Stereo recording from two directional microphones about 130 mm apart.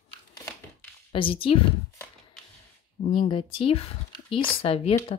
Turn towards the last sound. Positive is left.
turn(degrees=45)  # may be behind; listen again after turning